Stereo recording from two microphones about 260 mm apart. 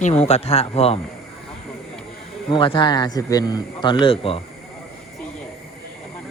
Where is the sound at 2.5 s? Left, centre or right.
Centre.